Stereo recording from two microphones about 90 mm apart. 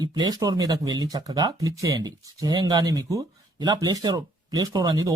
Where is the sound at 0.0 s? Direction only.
50° right (ahead or behind).